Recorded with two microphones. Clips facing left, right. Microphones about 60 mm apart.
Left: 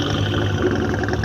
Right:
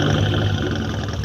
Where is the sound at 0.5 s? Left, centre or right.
Left.